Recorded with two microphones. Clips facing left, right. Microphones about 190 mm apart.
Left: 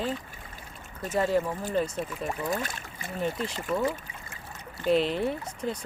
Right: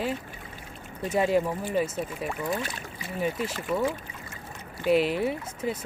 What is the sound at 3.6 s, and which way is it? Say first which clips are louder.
Speech: even; centre (ahead or behind).